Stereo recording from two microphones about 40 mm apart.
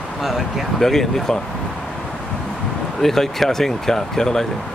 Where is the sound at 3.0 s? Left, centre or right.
Centre.